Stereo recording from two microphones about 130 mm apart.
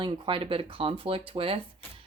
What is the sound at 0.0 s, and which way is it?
Speech, 40° right (ahead or behind).